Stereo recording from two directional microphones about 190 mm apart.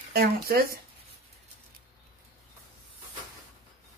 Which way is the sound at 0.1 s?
55° right (ahead or behind).